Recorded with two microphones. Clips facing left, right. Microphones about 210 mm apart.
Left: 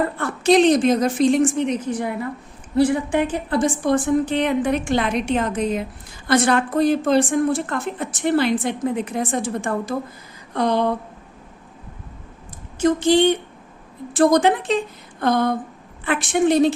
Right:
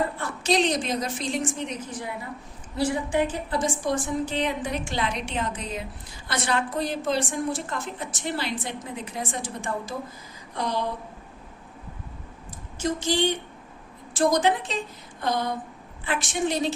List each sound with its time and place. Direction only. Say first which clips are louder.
0.2 s a woman's voice: left 12 dB; 55° left (ahead or behind)
12.8 s a woman's voice: left 9 dB; 60° left (ahead or behind)